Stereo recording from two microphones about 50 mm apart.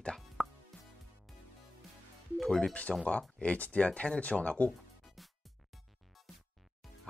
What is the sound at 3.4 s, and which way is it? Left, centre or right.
Speech, left.